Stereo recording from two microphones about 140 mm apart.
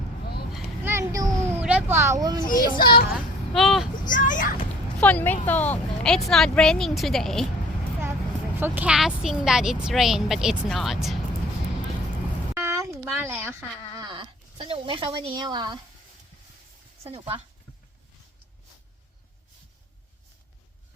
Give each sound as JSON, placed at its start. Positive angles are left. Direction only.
{"t": 0.9, "sound": "a sound", "side_deg": -20}
{"t": 1.5, "sound": "cat", "side_deg": -10}
{"t": 2.6, "sound": "a child's voice", "side_deg": 35}
{"t": 3.5, "sound": "speech", "side_deg": 0}
{"t": 4.1, "sound": "a sound", "side_deg": 70}
{"t": 4.9, "sound": "a woman's voice", "side_deg": 10}
{"t": 8.5, "sound": "a woman's voice", "side_deg": -15}
{"t": 12.5, "sound": "a sound", "side_deg": -20}
{"t": 14.0, "sound": "speech", "side_deg": -35}
{"t": 17.0, "sound": "speech", "side_deg": -40}